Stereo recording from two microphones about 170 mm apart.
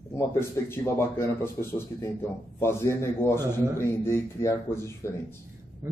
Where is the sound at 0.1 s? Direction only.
15° left (ahead or behind).